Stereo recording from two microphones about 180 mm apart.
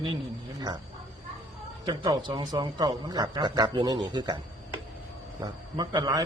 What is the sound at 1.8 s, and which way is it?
A man's voice, 25° right (ahead or behind).